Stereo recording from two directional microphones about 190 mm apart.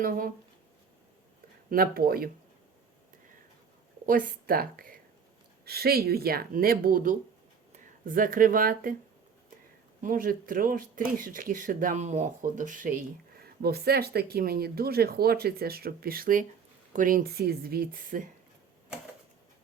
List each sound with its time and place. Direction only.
0.0 s speech: 50° right (ahead or behind)
1.7 s speech: 50° right (ahead or behind)
4.0 s speech: 50° right (ahead or behind)
10.0 s speech: 45° right (ahead or behind)